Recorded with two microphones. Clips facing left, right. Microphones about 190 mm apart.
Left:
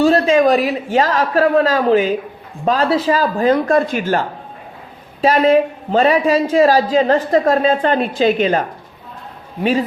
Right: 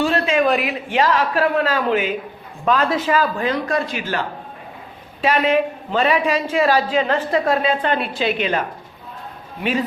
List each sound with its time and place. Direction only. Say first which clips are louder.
0.0 s a man's voice: left 6 dB; 40° left (ahead or behind)